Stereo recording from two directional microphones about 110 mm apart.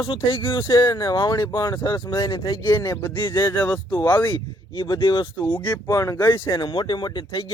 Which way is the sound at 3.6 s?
10° left (ahead or behind).